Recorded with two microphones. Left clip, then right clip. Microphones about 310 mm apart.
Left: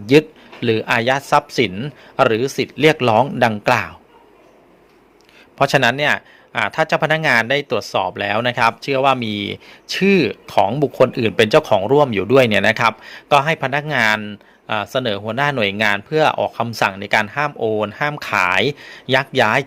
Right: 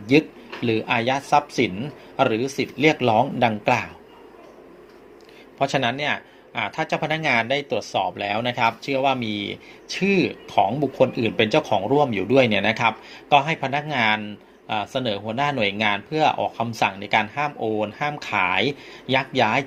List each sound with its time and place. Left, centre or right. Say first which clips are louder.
0.0 s a man's voice: left 6 dB; left
5.5 s a man's voice: left 7 dB; left